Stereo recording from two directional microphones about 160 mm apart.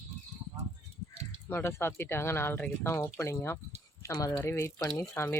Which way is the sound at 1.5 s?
15° left (ahead or behind).